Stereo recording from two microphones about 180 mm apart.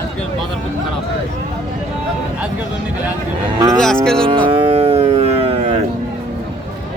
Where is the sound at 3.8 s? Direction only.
5° left (ahead or behind).